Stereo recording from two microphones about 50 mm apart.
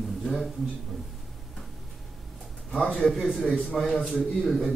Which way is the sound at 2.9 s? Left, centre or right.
Centre.